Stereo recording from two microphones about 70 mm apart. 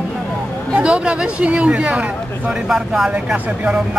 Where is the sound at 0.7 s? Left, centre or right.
Centre.